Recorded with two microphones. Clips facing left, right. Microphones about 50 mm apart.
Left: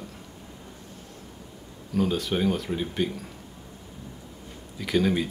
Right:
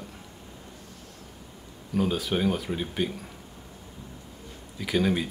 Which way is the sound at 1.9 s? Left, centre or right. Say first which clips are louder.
Left 1 dB; centre.